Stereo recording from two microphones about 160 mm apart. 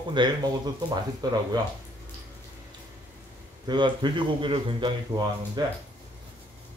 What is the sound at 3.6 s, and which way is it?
Speech, 30° right (ahead or behind).